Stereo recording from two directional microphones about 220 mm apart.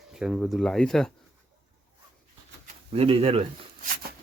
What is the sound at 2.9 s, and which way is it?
Speech, 25° right (ahead or behind).